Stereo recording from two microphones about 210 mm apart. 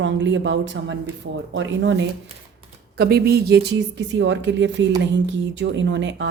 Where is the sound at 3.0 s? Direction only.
50° right (ahead or behind).